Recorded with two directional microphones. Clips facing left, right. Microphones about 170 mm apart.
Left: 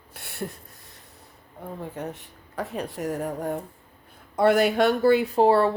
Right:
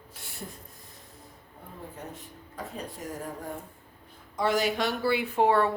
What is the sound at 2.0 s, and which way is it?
Speech, 70° left (ahead or behind).